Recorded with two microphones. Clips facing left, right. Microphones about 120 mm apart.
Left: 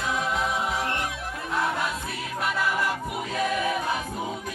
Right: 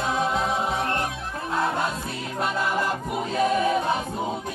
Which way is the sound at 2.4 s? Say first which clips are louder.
Right 2 dB; 25° right (ahead or behind).